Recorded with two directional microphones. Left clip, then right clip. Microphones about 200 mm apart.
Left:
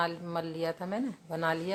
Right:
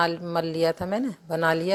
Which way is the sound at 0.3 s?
35° right (ahead or behind).